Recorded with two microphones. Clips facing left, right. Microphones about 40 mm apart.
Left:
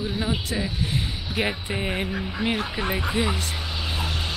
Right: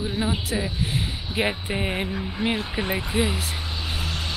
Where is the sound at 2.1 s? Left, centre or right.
Centre.